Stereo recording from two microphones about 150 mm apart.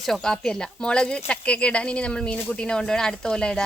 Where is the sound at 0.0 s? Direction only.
5° left (ahead or behind).